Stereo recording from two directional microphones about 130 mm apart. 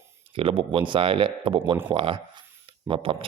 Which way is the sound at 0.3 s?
40° right (ahead or behind).